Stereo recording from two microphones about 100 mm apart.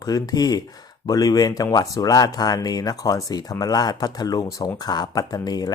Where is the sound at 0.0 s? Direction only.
40° left (ahead or behind).